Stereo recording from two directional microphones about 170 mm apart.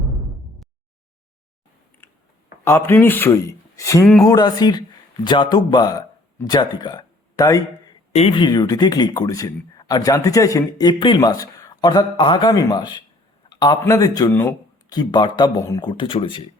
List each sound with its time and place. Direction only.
2.0 s chewing: 15° left (ahead or behind)
2.6 s speech: 15° left (ahead or behind)
8.1 s speech: 35° left (ahead or behind)